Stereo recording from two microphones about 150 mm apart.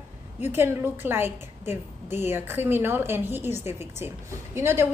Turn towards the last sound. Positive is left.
turn(degrees=-15)  # may be behind; listen again after turning